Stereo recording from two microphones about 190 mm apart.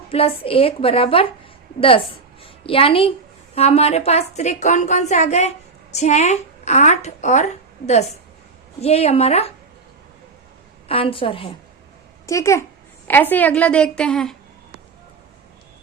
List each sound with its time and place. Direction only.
0.1 s a woman's voice: 30° left (ahead or behind)
2.6 s a woman's voice: 30° left (ahead or behind)
10.8 s a woman's voice: 30° left (ahead or behind)
12.2 s a child's voice: 15° left (ahead or behind)